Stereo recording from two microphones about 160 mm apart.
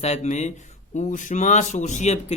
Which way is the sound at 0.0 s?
45° left (ahead or behind).